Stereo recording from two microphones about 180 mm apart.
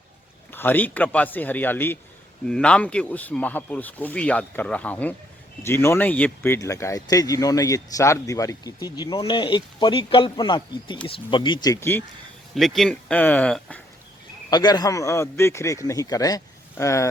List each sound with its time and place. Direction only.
0.5 s speech: 10° left (ahead or behind)
12.5 s speech: centre (ahead or behind)
14.5 s speech: 25° left (ahead or behind)